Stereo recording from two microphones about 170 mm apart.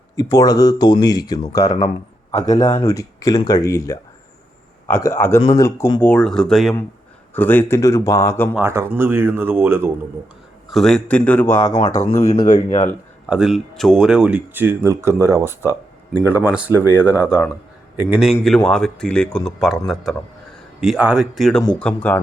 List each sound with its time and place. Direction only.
0.2 s speech: 20° left (ahead or behind)
2.3 s speech: 35° left (ahead or behind)
2.8 s speech: 20° left (ahead or behind); by 6.7 s centre (ahead or behind)
7.3 s speech: 10° left (ahead or behind)
8.5 s speech: 15° right (ahead or behind)
10.7 s speech: centre (ahead or behind); by 12.6 s 25° left (ahead or behind)
13.2 s a man's voice: 5° right (ahead or behind)